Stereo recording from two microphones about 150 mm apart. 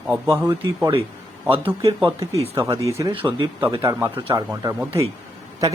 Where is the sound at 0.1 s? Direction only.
15° right (ahead or behind).